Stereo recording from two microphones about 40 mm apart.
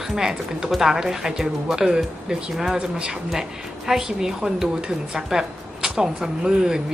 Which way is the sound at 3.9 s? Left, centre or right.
Centre.